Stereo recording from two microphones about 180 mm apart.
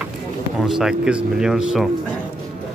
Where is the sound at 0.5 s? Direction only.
Centre (ahead or behind).